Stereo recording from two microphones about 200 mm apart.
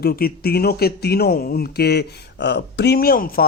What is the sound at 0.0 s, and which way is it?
A man's voice, 50° left (ahead or behind).